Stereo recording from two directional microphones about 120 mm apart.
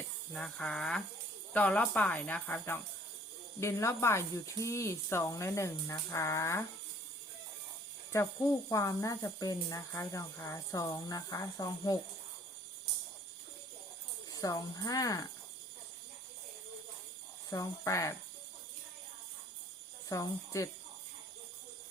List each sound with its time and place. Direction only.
0.3 s speech: 5° left (ahead or behind); by 6.7 s 25° left (ahead or behind)
8.1 s speech: 25° left (ahead or behind)
14.3 s speech: 30° left (ahead or behind)
17.5 s speech: 25° left (ahead or behind)
20.1 s speech: 30° left (ahead or behind)